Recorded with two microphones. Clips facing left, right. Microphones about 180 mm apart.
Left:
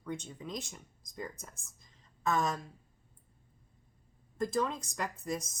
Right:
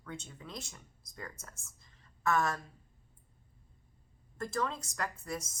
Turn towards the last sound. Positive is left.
turn(degrees=15)  # may be behind; listen again after turning